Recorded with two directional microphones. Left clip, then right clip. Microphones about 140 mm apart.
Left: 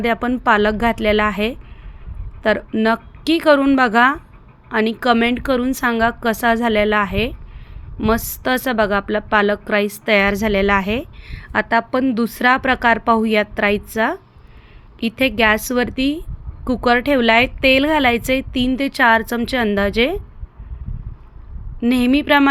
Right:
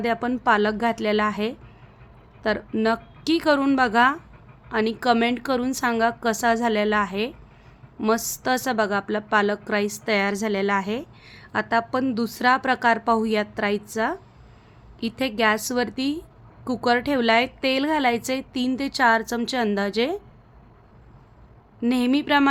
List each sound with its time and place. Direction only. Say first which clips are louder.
0.0 s a woman's voice: left 5 dB; 15° left (ahead or behind)
21.8 s a woman's voice: left 6 dB; 10° left (ahead or behind)